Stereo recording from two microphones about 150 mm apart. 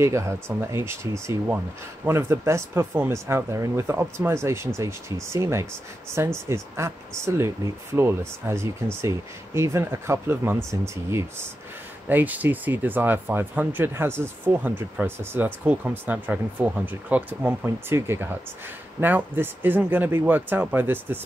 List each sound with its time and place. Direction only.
0.0 s speech: 20° right (ahead or behind)